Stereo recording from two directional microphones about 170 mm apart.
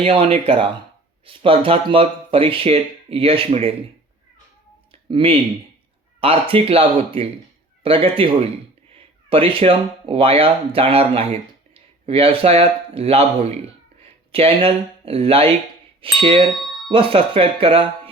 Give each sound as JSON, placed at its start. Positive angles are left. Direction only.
{"t": 0.0, "sound": "speech", "side_deg": -35}
{"t": 5.0, "sound": "speech", "side_deg": -30}